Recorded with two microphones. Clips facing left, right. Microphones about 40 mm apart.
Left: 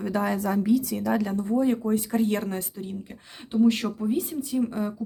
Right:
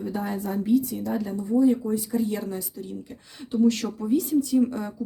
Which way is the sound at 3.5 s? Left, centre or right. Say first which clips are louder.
Even; left.